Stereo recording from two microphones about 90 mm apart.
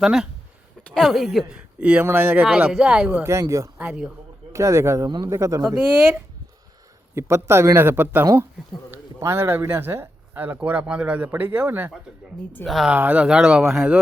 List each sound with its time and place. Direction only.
0.0 s a woman's voice: 5° right (ahead or behind)
3.3 s speech: 30° right (ahead or behind)
4.5 s speech: 35° right (ahead or behind)
7.2 s speech: 30° right (ahead or behind)
12.6 s a woman's voice: centre (ahead or behind)
12.9 s speech: 15° right (ahead or behind)